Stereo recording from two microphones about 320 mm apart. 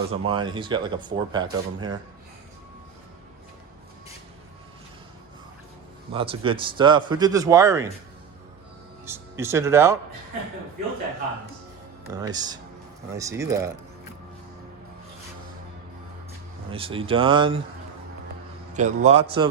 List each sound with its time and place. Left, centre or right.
0.1 s speech: centre
6.1 s speech: centre
9.0 s speech: centre
12.1 s speech: centre
16.6 s speech: centre
18.7 s a man's voice: right